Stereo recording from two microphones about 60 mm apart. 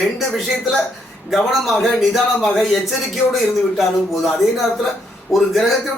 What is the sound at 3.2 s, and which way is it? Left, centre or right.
Speech, left.